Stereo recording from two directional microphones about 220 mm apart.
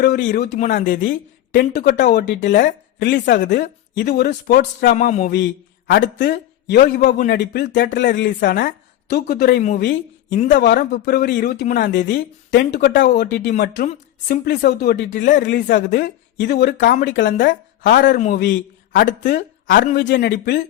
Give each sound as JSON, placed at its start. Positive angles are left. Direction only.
{"t": 0.0, "sound": "a man's voice", "side_deg": 45}
{"t": 3.0, "sound": "speech", "side_deg": 50}
{"t": 3.4, "sound": "a man's voice", "side_deg": 35}
{"t": 5.9, "sound": "speech", "side_deg": 55}
{"t": 10.3, "sound": "a man's voice", "side_deg": 35}
{"t": 10.6, "sound": "a man's voice", "side_deg": 45}